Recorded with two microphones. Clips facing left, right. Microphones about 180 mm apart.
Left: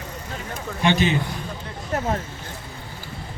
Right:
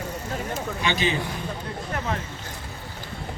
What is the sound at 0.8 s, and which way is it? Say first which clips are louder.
Speech: left 8 dB; 50° left (ahead or behind).